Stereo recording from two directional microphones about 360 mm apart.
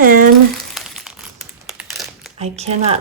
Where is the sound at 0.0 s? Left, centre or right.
Right.